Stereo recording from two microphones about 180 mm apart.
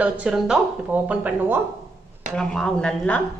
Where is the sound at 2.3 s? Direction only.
5° left (ahead or behind).